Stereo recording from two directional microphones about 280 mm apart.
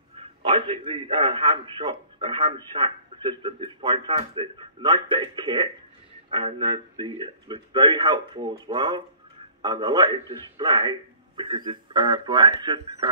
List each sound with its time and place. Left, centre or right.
0.2 s a man's voice: centre